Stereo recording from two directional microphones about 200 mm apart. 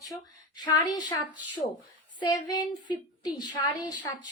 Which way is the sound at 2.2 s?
20° left (ahead or behind).